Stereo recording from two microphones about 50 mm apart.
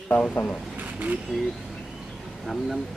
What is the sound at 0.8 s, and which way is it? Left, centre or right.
Speech, right.